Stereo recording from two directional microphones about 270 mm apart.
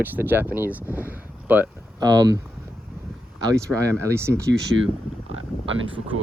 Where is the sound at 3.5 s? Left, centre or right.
Centre.